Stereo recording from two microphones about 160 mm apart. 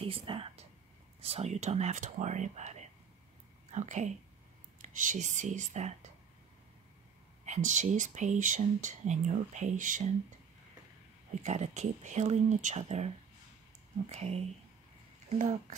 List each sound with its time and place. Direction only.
0.0 s speech: 35° right (ahead or behind)
7.4 s speech: 50° right (ahead or behind)
11.3 s speech: 45° right (ahead or behind)